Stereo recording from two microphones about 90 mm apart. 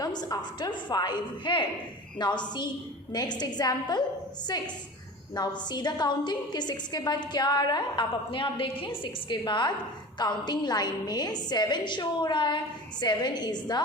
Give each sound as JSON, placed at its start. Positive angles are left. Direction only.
{"t": 0.0, "sound": "a woman's voice", "side_deg": 50}
{"t": 9.4, "sound": "a woman's voice", "side_deg": 60}